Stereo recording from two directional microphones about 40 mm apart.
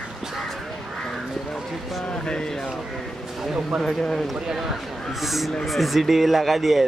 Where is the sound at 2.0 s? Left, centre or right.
Left.